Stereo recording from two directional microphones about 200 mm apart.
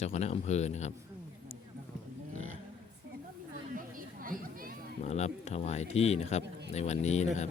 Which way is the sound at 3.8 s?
45° right (ahead or behind).